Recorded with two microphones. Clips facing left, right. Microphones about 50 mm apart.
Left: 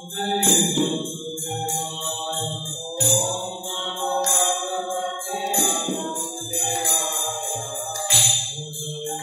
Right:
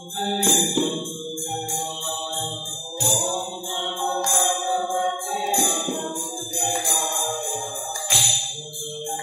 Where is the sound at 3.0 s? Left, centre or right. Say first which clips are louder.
Even; centre.